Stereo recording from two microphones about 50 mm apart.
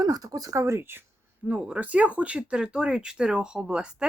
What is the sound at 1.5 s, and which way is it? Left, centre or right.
Speech, right.